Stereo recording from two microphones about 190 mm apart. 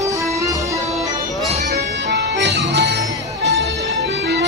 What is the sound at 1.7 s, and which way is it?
Music, 65° right (ahead or behind).